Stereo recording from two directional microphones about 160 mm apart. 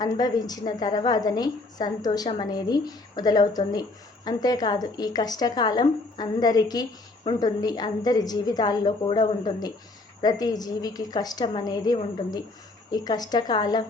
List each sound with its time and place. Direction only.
0.0 s a woman's voice: 25° left (ahead or behind)